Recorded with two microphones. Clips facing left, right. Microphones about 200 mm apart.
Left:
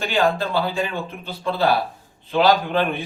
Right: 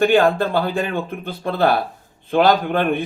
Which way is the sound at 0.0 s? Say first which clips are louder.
Right 6 dB; 55° right (ahead or behind).